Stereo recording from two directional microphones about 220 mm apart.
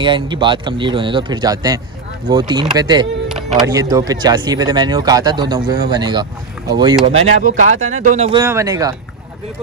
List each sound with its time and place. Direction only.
0.0 s speech: 20° right (ahead or behind)
7.1 s speech: 35° right (ahead or behind)
8.3 s speech: 15° right (ahead or behind)